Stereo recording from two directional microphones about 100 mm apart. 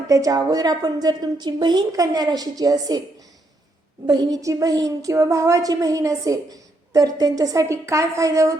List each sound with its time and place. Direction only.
0.1 s a woman's voice: 35° right (ahead or behind)
4.0 s a woman's voice: 45° right (ahead or behind)